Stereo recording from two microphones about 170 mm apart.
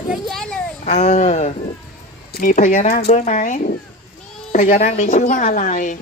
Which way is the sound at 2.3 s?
55° left (ahead or behind).